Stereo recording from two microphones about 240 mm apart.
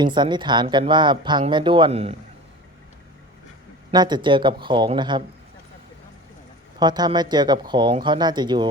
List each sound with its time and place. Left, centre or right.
0.0 s speech: centre
3.9 s speech: centre
6.7 s speech: centre